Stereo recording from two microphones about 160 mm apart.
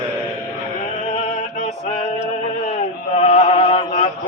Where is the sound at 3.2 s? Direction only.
45° left (ahead or behind).